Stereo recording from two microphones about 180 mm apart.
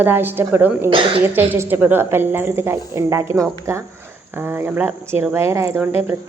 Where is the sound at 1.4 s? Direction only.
10° right (ahead or behind).